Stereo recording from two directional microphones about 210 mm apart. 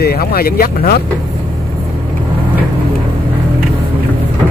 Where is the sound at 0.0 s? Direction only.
45° left (ahead or behind).